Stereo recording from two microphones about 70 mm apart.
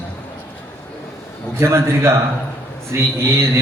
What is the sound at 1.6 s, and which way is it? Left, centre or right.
A man's voice, right.